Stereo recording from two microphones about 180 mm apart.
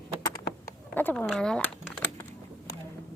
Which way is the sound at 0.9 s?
10° left (ahead or behind).